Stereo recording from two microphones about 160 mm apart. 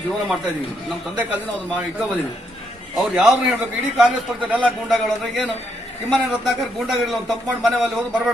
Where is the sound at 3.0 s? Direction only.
5° right (ahead or behind).